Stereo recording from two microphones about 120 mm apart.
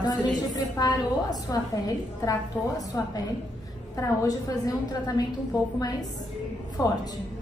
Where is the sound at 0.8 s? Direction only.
35° left (ahead or behind).